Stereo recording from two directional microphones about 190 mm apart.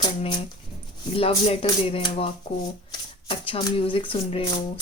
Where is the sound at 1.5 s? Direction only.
30° left (ahead or behind).